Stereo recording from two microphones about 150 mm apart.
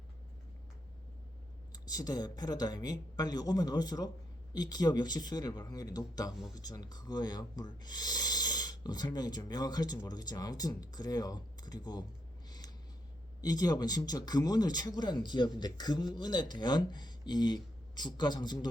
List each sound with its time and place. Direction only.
1.7 s speech: 25° left (ahead or behind)
12.5 s a sound: 25° left (ahead or behind)
13.4 s speech: 25° left (ahead or behind)